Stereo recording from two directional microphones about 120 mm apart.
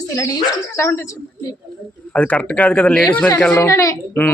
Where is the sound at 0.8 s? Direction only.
25° left (ahead or behind).